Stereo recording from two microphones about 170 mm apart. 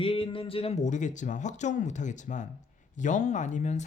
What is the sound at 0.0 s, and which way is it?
Speech, 30° left (ahead or behind).